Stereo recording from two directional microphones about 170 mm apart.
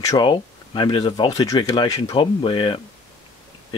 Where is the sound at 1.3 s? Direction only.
20° left (ahead or behind).